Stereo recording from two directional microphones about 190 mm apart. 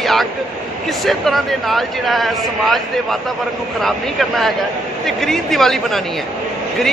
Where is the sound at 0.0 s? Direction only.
Centre (ahead or behind).